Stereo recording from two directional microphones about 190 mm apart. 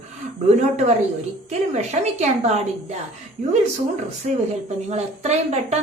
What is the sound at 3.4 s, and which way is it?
Speech, 50° right (ahead or behind).